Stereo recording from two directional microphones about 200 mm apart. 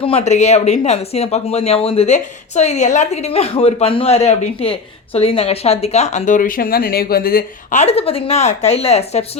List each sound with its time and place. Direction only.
0.0 s speech: 30° left (ahead or behind)